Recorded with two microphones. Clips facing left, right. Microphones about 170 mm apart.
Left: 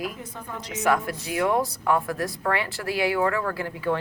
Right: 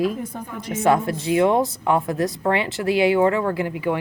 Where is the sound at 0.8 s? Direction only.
25° right (ahead or behind).